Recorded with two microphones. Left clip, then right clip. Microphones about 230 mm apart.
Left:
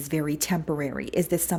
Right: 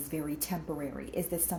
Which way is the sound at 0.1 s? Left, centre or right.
Left.